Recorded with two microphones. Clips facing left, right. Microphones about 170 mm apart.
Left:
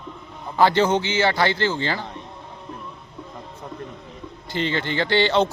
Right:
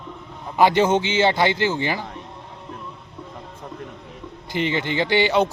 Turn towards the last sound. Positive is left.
turn(degrees=-10)  # may be behind; listen again after turning